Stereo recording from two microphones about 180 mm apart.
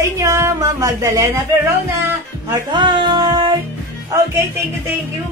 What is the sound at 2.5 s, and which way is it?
Music, 25° right (ahead or behind).